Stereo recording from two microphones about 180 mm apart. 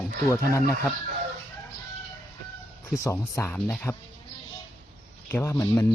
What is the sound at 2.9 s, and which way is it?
Speech, 15° left (ahead or behind).